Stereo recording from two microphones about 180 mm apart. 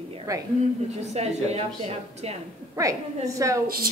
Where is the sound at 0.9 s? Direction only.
35° right (ahead or behind).